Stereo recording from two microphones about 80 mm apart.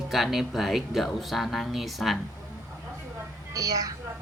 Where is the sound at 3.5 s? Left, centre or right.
Right.